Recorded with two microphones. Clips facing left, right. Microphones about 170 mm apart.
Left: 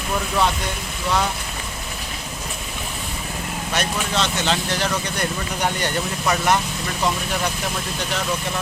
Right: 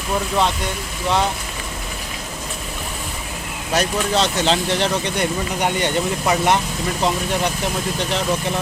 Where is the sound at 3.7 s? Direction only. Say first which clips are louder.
Right 5 dB; 35° right (ahead or behind).